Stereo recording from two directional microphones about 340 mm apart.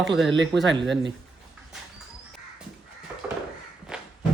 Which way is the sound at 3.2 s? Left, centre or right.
Centre.